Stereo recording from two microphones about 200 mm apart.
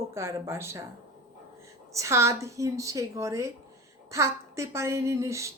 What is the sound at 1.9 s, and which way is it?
A woman's voice, 15° right (ahead or behind).